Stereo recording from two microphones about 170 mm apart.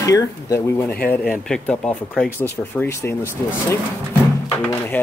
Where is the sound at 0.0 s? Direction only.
20° left (ahead or behind).